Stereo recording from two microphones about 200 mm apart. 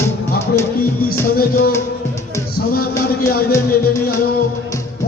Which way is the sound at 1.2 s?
45° left (ahead or behind).